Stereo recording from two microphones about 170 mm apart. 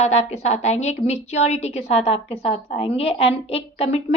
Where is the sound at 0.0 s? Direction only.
40° left (ahead or behind).